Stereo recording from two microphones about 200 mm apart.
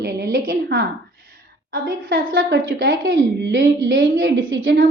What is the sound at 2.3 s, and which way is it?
Speech, 75° right (ahead or behind).